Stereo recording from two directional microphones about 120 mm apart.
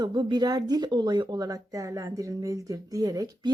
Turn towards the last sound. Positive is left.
turn(degrees=-30)  # may be behind; listen again after turning